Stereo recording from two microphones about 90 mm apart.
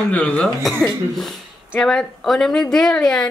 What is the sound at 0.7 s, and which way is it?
Speech, 5° left (ahead or behind).